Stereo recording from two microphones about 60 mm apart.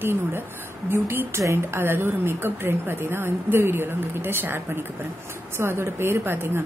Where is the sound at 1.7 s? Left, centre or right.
Right.